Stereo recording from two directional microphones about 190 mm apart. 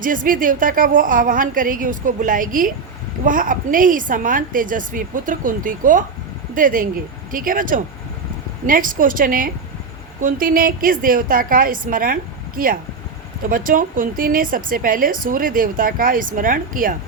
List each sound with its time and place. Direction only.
0.0 s speech: 45° right (ahead or behind)